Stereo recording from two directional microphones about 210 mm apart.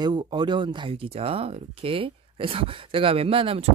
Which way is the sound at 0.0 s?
20° right (ahead or behind).